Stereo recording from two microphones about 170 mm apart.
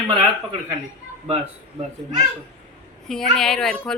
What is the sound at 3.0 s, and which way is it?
Speech, 5° left (ahead or behind).